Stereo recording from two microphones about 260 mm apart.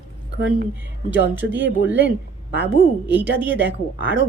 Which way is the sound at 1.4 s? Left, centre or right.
Centre.